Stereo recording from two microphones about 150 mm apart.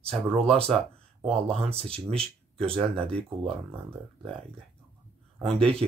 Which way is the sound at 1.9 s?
40° right (ahead or behind).